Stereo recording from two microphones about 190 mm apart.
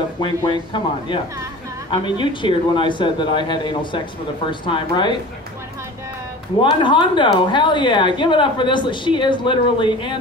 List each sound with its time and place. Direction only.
0.2 s a woman's voice: 25° left (ahead or behind)
6.6 s a woman's voice: 25° left (ahead or behind)